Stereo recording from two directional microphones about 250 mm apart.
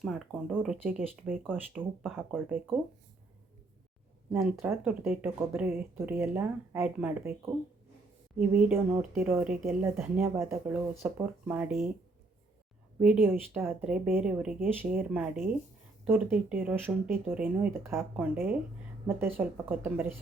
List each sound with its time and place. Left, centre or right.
0.0 s a woman's voice: centre
4.3 s speech: centre
8.4 s speech: centre
13.0 s a woman's voice: centre